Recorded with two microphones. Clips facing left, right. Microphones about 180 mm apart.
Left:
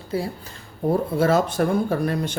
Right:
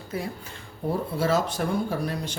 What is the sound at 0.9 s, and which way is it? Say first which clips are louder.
Speech: left 5 dB; 55° left (ahead or behind).